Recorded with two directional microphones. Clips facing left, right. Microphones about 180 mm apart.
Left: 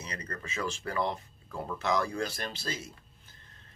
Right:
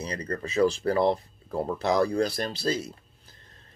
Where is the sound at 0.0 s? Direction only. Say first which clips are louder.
Right 9 dB; 35° right (ahead or behind).